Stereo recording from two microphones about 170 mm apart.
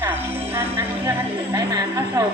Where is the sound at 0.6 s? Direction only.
15° right (ahead or behind).